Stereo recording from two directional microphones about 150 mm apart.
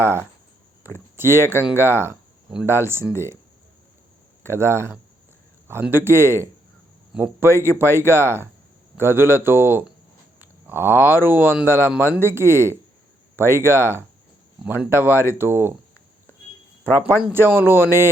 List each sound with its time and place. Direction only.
0.9 s speech: 15° right (ahead or behind)
4.4 s speech: 15° right (ahead or behind)
16.8 s speech: 15° right (ahead or behind)